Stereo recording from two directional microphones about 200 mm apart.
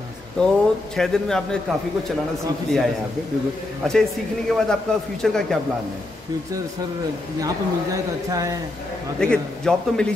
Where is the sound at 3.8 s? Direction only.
5° left (ahead or behind).